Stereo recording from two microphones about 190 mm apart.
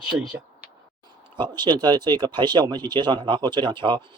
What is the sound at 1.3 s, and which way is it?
Speech, 25° right (ahead or behind).